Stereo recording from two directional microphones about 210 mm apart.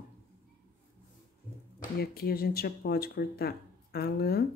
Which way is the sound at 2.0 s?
45° left (ahead or behind).